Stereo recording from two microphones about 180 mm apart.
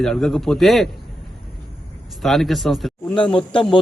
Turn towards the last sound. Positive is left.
turn(degrees=30)  # may be behind; listen again after turning